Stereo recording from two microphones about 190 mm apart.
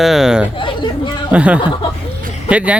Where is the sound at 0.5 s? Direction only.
25° left (ahead or behind).